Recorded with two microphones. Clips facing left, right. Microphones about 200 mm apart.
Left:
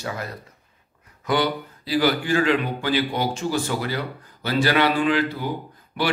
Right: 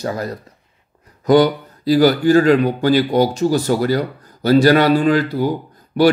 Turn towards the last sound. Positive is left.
turn(degrees=-40)  # may be behind; listen again after turning